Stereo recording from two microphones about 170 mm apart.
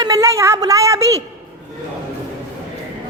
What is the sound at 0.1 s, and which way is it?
A woman's voice, 20° right (ahead or behind).